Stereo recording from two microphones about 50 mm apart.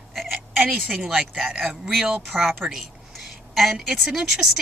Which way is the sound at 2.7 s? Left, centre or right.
Centre.